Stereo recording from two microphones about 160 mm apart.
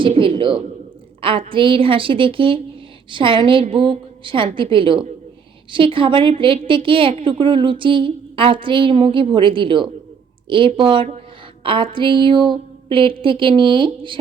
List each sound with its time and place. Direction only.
0.1 s a woman's voice: 35° right (ahead or behind)